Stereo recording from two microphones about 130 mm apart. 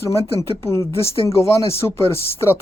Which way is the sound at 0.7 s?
20° left (ahead or behind).